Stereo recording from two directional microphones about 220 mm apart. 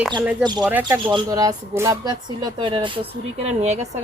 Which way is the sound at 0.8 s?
20° right (ahead or behind).